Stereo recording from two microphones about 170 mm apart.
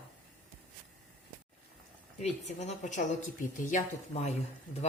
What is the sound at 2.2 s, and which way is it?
Speech, 40° left (ahead or behind).